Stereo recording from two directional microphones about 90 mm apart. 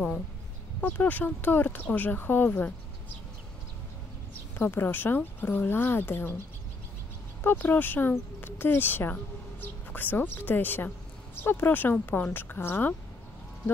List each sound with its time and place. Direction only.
0.7 s speech: 20° left (ahead or behind)
4.6 s speech: 25° left (ahead or behind)
7.4 s speech: 20° left (ahead or behind)